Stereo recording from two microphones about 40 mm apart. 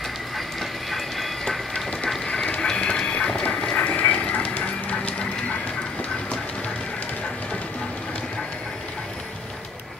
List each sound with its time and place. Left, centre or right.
0.6 s train: centre
2.2 s a sound: centre
2.6 s duck: left
3.7 s train: left